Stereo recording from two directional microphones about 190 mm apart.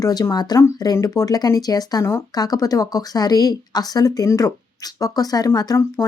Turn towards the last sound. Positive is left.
turn(degrees=15)  # may be behind; listen again after turning